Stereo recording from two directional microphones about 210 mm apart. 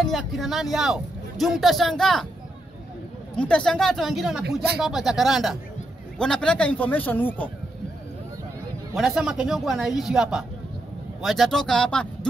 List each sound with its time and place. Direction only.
0.0 s speech: centre (ahead or behind)
3.3 s speech: 5° left (ahead or behind)
4.5 s speech: 50° right (ahead or behind)
4.7 s speech: centre (ahead or behind)
8.9 s speech: centre (ahead or behind)